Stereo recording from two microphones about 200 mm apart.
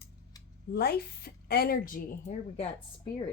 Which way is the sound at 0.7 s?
50° left (ahead or behind).